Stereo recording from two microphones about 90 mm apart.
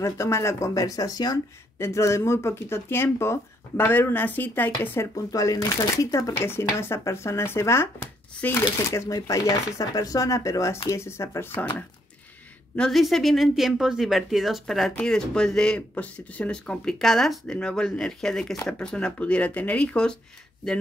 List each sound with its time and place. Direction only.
0.0 s speech: 35° left (ahead or behind)
1.8 s speech: 35° left (ahead or behind)
5.1 s speech: 40° left (ahead or behind)
6.3 s speech: 25° left (ahead or behind)
8.9 s speech: 35° left (ahead or behind)
12.7 s speech: 10° left (ahead or behind)